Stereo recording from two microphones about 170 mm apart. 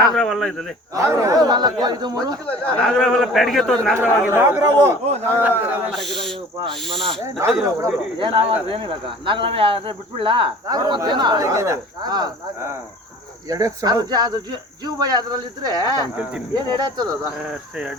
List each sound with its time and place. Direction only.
0.0 s speech: centre (ahead or behind)
0.9 s speech: 20° right (ahead or behind)
2.7 s a man's voice: centre (ahead or behind)
4.4 s a man's voice: 15° right (ahead or behind)
5.9 s a man's voice: centre (ahead or behind)
7.3 s a man's voice: 15° right (ahead or behind)
8.2 s speech: 30° right (ahead or behind)